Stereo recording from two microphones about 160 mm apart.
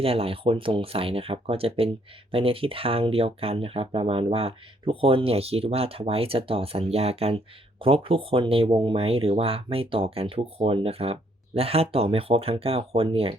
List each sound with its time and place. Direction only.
0.0 s speech: 35° right (ahead or behind)